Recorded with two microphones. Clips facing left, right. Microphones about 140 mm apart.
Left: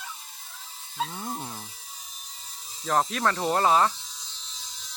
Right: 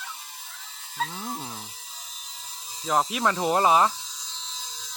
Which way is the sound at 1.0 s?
5° left (ahead or behind).